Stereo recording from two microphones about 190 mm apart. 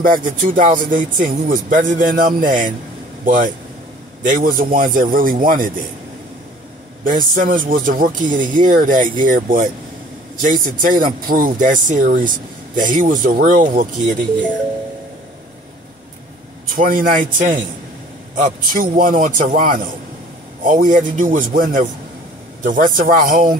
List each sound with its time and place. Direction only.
0.0 s speech: 45° right (ahead or behind)
7.1 s speech: 45° right (ahead or behind)
16.6 s a man's voice: 45° right (ahead or behind)